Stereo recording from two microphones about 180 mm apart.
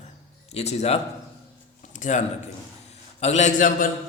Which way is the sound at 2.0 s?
40° left (ahead or behind).